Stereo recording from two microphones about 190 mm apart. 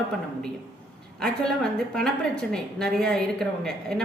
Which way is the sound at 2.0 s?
5° left (ahead or behind).